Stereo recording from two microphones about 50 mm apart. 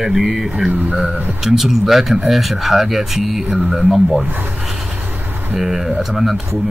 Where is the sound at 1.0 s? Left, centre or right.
Right.